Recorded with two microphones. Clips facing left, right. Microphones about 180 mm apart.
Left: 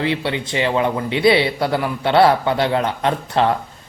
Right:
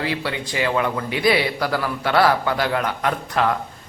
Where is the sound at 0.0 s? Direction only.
25° left (ahead or behind).